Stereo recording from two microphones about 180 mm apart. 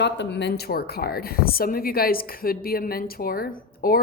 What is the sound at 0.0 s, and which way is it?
A woman's voice, 70° left (ahead or behind).